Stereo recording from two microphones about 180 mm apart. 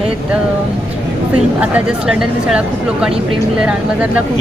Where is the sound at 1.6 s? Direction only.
5° right (ahead or behind).